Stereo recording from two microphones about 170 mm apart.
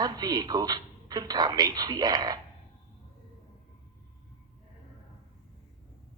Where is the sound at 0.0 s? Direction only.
25° right (ahead or behind).